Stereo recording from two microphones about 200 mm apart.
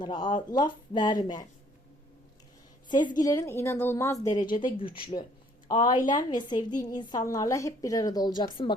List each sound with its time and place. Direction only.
0.0 s a woman's voice: 20° left (ahead or behind)
3.2 s a woman's voice: 15° left (ahead or behind)